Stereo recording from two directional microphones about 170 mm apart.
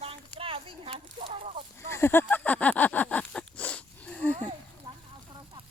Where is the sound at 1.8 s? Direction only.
15° left (ahead or behind).